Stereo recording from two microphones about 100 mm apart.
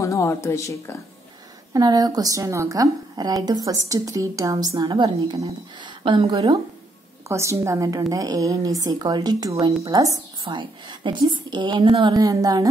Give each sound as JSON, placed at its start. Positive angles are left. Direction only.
{"t": 0.0, "sound": "speech", "side_deg": 30}
{"t": 1.7, "sound": "speech", "side_deg": -40}
{"t": 7.2, "sound": "speech", "side_deg": -30}
{"t": 10.4, "sound": "a woman's voice", "side_deg": -55}
{"t": 12.1, "sound": "speech", "side_deg": -40}